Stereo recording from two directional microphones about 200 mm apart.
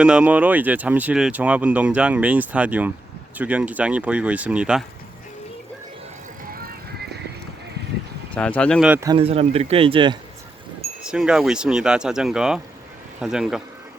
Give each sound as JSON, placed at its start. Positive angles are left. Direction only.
{"t": 0.0, "sound": "speech", "side_deg": -5}
{"t": 6.5, "sound": "bicycle", "side_deg": -50}
{"t": 8.4, "sound": "speech", "side_deg": 5}
{"t": 8.8, "sound": "speech", "side_deg": -5}
{"t": 9.0, "sound": "speech", "side_deg": -30}
{"t": 11.0, "sound": "speech", "side_deg": -5}